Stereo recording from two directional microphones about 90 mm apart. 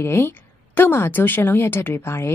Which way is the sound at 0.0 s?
30° left (ahead or behind).